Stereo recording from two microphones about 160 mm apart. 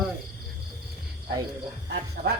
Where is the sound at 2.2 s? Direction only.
70° right (ahead or behind).